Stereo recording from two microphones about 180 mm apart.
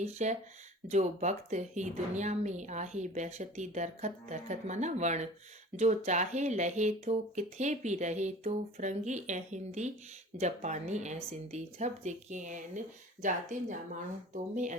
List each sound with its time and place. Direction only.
0.0 s speech: 40° right (ahead or behind)